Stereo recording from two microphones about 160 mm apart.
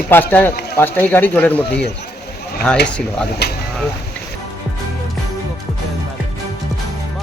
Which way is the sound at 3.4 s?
90° left.